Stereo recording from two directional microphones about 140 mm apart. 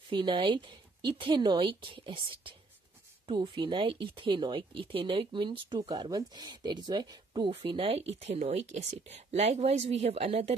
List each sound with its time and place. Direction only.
0.1 s speech: 35° right (ahead or behind)